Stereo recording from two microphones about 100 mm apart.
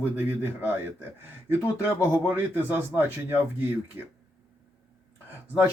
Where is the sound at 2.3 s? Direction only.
15° right (ahead or behind).